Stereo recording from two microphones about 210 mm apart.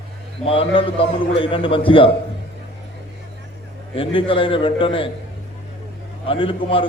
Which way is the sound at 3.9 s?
25° left (ahead or behind).